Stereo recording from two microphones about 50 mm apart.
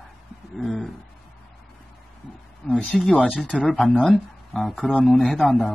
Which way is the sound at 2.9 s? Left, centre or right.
Centre.